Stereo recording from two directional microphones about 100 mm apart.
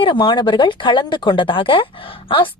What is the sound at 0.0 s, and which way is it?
A woman's voice, 50° left (ahead or behind).